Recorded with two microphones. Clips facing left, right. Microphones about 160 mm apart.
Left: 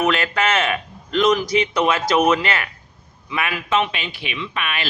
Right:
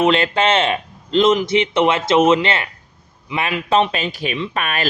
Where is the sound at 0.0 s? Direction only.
25° right (ahead or behind).